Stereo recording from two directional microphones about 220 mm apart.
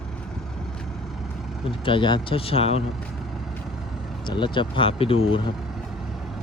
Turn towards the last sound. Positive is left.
turn(degrees=25)  # may be behind; listen again after turning